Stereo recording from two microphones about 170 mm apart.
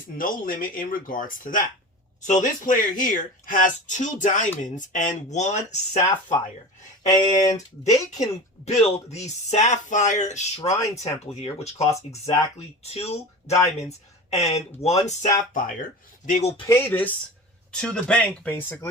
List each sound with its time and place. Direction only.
0.2 s speech: 55° left (ahead or behind)
7.1 s speech: 20° left (ahead or behind)
8.1 s speech: 40° left (ahead or behind)
16.7 s speech: 10° left (ahead or behind)